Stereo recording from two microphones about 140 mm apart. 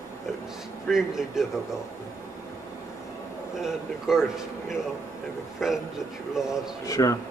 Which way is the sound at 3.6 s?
5° right (ahead or behind).